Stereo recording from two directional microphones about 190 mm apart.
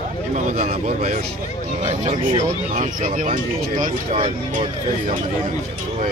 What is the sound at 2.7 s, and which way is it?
Speech, 40° right (ahead or behind).